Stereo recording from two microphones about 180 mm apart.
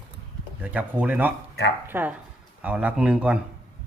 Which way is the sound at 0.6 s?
10° right (ahead or behind).